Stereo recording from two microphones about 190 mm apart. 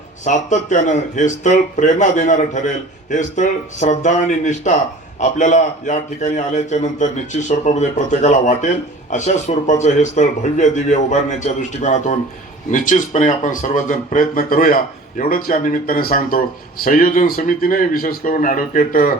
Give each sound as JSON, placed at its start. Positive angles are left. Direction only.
{"t": 0.3, "sound": "a man's voice", "side_deg": 40}